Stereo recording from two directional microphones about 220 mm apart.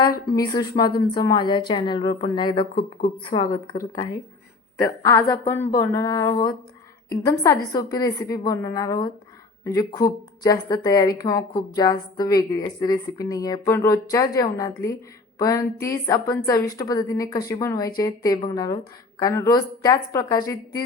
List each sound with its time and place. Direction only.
0.0 s a woman's voice: 15° left (ahead or behind)